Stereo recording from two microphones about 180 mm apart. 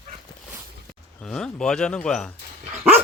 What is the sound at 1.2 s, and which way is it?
Speech, 5° left (ahead or behind).